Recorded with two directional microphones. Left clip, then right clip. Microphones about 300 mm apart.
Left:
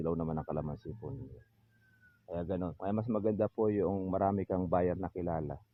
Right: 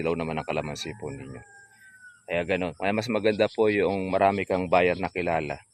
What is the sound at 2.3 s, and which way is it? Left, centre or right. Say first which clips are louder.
Speech: right 11 dB; right.